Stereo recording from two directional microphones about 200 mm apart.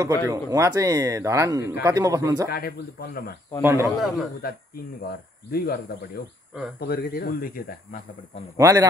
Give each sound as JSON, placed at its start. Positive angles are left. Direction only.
{"t": 0.0, "sound": "speech", "side_deg": -15}
{"t": 2.5, "sound": "speech", "side_deg": 50}
{"t": 3.6, "sound": "speech", "side_deg": -15}
{"t": 4.0, "sound": "a man's voice", "side_deg": 0}
{"t": 4.4, "sound": "speech", "side_deg": 50}
{"t": 8.5, "sound": "speech", "side_deg": -15}